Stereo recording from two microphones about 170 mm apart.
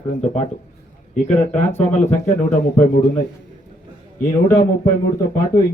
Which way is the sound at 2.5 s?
45° left (ahead or behind).